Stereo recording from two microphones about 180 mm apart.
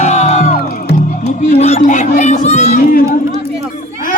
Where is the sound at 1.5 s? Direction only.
35° left (ahead or behind).